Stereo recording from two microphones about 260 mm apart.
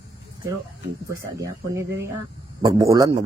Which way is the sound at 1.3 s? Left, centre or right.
Centre.